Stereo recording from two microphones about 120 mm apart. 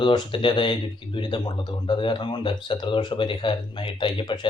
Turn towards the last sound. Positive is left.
turn(degrees=40)  # may be behind; listen again after turning